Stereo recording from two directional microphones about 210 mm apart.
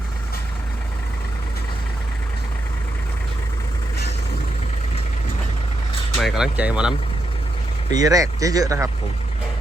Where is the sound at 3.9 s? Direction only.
50° left (ahead or behind).